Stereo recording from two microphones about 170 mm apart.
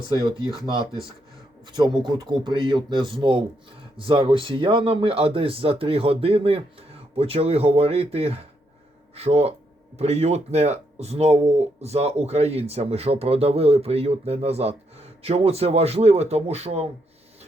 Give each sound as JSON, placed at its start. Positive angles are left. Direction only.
{"t": 0.1, "sound": "a man's voice", "side_deg": -25}